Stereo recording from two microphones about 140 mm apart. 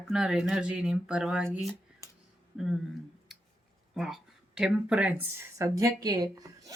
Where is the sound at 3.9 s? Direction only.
Centre (ahead or behind).